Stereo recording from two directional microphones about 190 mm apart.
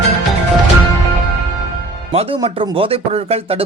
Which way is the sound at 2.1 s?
30° right (ahead or behind).